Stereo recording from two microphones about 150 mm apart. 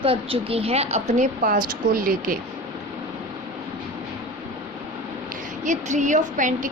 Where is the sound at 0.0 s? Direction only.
40° right (ahead or behind).